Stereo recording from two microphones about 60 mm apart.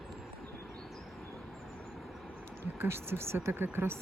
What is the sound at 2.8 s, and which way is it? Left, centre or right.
Speech, right.